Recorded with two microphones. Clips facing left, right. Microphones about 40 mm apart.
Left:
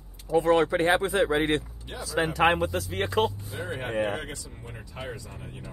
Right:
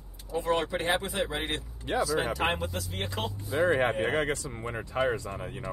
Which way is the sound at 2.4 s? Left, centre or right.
Left.